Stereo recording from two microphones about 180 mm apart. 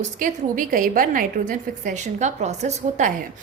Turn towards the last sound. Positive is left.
turn(degrees=-40)  # may be behind; listen again after turning